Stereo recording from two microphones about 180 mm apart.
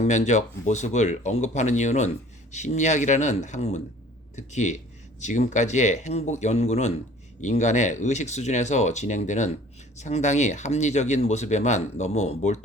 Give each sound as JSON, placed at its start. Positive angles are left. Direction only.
{"t": 0.0, "sound": "speech", "side_deg": 40}